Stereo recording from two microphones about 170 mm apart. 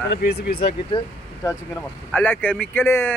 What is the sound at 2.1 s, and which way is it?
Speech, 10° left (ahead or behind).